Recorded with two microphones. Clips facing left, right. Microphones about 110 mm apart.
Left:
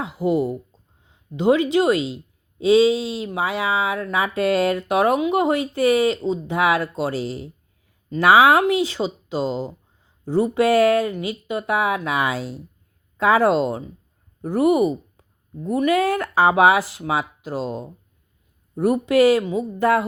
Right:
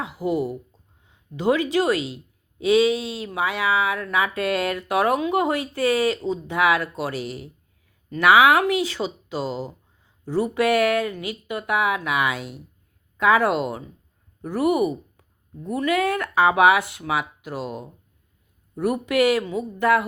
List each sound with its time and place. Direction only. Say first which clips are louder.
0.0 s speech: left 3 dB; 25° left (ahead or behind)